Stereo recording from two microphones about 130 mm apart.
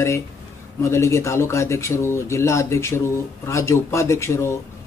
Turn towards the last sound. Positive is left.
turn(degrees=20)  # may be behind; listen again after turning